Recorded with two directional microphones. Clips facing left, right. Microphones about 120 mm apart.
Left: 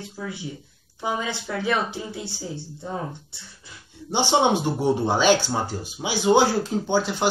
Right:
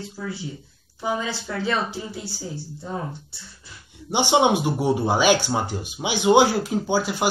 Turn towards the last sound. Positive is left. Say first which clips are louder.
# even
turn(degrees=-10)  # may be behind; listen again after turning